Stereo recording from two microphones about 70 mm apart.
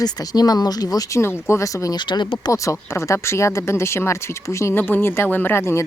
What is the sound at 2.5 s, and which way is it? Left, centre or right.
A woman's voice, left.